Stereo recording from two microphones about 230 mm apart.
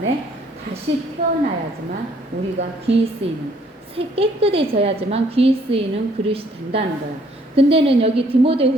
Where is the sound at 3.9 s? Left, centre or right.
Right.